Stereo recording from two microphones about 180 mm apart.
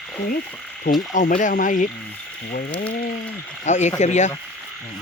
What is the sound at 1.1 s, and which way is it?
Speech, 45° left (ahead or behind).